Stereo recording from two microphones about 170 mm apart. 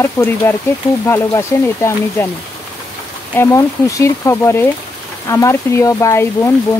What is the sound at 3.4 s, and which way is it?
Speech, 15° left (ahead or behind).